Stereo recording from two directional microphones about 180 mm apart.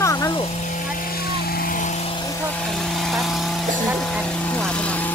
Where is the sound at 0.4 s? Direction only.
45° left (ahead or behind).